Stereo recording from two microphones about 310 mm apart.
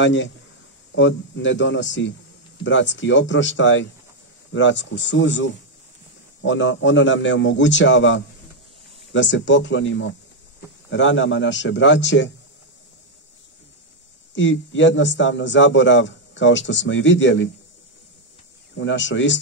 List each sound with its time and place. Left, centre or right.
0.0 s a man's voice: left
14.3 s a man's voice: left
18.8 s a man's voice: left